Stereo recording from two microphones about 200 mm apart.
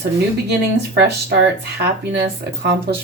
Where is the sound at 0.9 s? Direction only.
55° right (ahead or behind).